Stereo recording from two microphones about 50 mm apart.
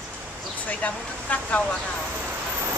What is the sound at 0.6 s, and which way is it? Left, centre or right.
Speech, left.